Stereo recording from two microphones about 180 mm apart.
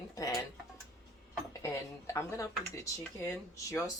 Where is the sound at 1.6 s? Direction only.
15° left (ahead or behind).